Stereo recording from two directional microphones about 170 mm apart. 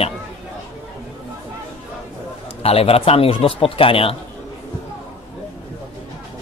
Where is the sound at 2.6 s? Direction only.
35° left (ahead or behind).